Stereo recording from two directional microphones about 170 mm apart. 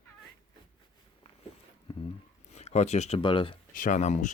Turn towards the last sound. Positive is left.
turn(degrees=45)  # may be behind; listen again after turning